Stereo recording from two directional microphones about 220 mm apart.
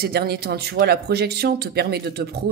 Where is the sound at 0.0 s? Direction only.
45° right (ahead or behind).